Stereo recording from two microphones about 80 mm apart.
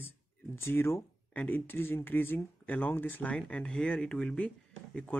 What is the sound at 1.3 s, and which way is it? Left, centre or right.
Speech, left.